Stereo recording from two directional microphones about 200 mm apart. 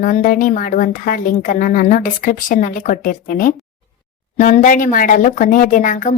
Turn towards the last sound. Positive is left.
turn(degrees=40)  # may be behind; listen again after turning